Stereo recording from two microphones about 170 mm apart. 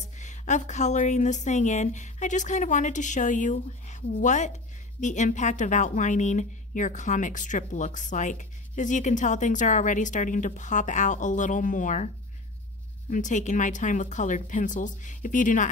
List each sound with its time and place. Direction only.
0.0 s a woman's voice: 45° left (ahead or behind)
13.1 s a woman's voice: 45° left (ahead or behind)